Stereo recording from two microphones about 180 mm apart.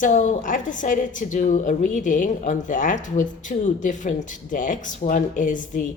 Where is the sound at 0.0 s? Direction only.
45° left (ahead or behind).